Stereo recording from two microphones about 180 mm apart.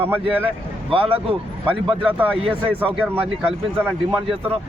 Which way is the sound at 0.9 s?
30° right (ahead or behind).